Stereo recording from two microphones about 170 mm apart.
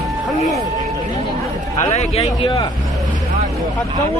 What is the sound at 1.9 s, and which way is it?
Speech, 40° left (ahead or behind).